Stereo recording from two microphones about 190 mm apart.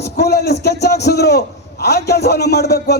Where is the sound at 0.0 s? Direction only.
60° left (ahead or behind).